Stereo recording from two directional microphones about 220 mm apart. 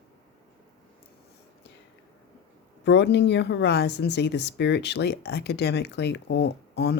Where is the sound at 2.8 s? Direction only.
50° left (ahead or behind).